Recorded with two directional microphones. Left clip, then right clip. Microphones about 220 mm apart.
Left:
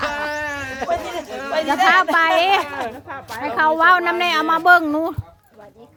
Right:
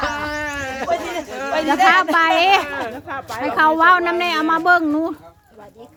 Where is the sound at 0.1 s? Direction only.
20° left (ahead or behind).